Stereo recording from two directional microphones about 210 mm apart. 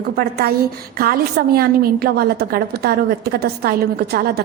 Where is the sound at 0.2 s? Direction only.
50° right (ahead or behind).